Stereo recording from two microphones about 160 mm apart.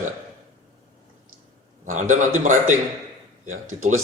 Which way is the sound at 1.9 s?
50° right (ahead or behind).